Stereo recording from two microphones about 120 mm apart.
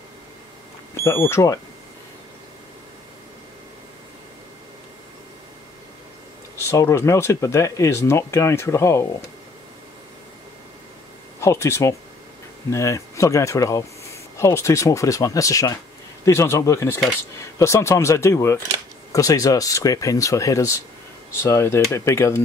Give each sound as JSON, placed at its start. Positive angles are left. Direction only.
{"t": 1.0, "sound": "speech", "side_deg": 20}
{"t": 6.5, "sound": "speech", "side_deg": 25}
{"t": 11.4, "sound": "speech", "side_deg": 20}